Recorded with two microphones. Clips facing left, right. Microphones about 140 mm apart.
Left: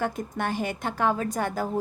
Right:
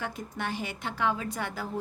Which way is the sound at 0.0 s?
45° left (ahead or behind).